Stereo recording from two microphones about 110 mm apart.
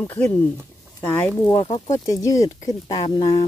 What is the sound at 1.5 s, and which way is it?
Speech, 40° left (ahead or behind).